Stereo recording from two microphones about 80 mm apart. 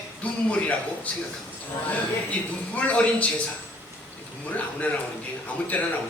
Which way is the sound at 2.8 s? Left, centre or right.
Centre.